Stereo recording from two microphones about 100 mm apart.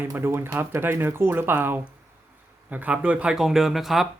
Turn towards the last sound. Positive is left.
turn(degrees=0)  # may be behind; listen again after turning